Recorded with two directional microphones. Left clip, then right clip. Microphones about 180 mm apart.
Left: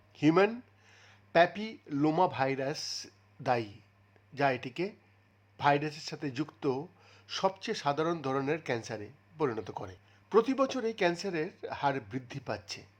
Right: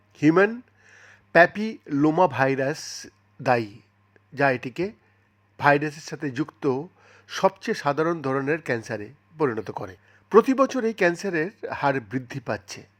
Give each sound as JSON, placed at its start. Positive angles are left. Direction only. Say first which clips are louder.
{"t": 0.1, "sound": "speech", "louder": "right 7 dB", "side_deg": -20}